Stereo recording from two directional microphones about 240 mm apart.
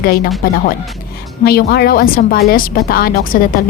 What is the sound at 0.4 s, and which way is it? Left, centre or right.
A woman's voice, left.